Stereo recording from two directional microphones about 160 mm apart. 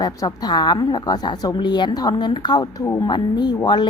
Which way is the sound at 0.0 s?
25° left (ahead or behind).